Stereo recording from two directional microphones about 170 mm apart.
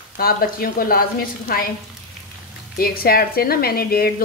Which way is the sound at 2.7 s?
60° left (ahead or behind).